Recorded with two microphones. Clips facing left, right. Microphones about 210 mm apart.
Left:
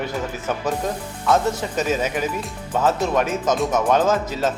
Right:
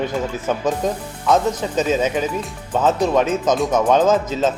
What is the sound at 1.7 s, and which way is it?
Speech, 20° right (ahead or behind).